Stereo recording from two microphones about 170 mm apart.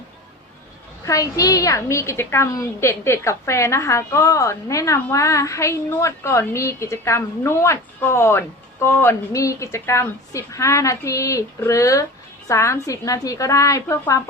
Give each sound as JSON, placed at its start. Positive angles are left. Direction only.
{"t": 1.0, "sound": "a woman's voice", "side_deg": 20}